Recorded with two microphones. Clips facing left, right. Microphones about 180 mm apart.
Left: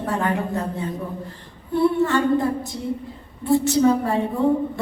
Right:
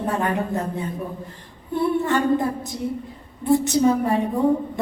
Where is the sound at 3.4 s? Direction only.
20° right (ahead or behind).